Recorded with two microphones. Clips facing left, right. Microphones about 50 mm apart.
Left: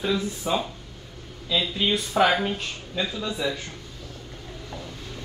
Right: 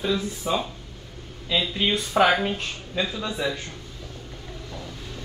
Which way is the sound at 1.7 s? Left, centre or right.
Right.